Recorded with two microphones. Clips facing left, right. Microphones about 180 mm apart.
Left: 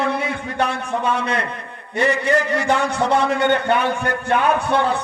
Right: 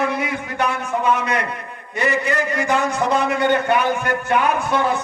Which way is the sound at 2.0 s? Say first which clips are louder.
Left 2 dB; 30° left (ahead or behind).